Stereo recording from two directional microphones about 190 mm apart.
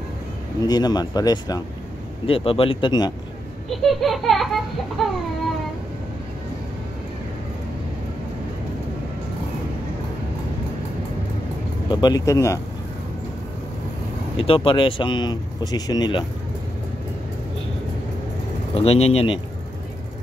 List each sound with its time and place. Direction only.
0.7 s speech: 20° left (ahead or behind)
3.7 s baby laughter: centre (ahead or behind)
11.9 s speech: 20° left (ahead or behind)
14.3 s speech: 25° left (ahead or behind)
18.8 s speech: 30° left (ahead or behind)